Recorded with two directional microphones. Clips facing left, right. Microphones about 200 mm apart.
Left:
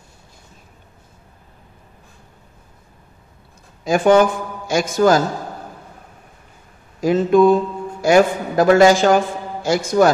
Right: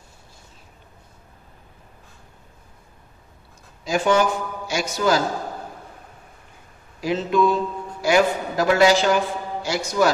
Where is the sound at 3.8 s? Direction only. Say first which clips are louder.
Left 6 dB; 55° left (ahead or behind).